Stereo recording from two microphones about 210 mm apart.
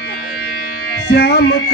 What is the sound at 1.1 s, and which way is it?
Music, 50° left (ahead or behind).